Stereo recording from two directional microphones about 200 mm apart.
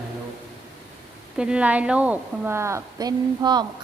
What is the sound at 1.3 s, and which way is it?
A woman's voice, 5° right (ahead or behind).